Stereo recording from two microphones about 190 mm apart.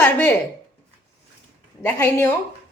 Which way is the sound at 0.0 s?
10° left (ahead or behind).